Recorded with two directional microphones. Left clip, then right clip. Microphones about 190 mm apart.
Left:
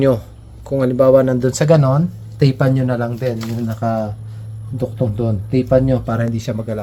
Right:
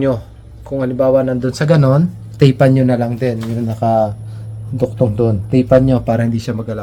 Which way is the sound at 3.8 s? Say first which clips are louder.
Right 7 dB; 25° left (ahead or behind).